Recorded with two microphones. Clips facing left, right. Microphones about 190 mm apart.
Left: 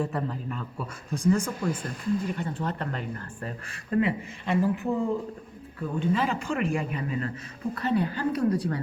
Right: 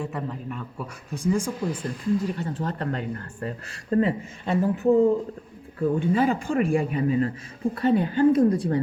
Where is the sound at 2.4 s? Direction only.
40° right (ahead or behind).